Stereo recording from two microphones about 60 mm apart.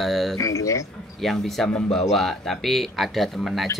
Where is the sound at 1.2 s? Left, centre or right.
Centre.